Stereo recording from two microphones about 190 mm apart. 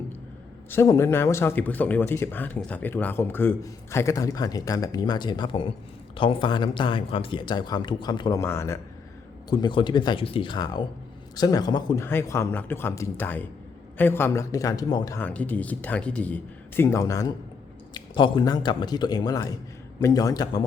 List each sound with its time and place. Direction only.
0.7 s speech: 15° left (ahead or behind)